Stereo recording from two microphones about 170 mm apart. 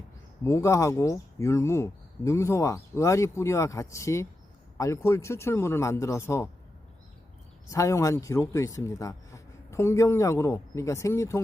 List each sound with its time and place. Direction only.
0.4 s speech: 15° left (ahead or behind)
7.7 s speech: 20° left (ahead or behind)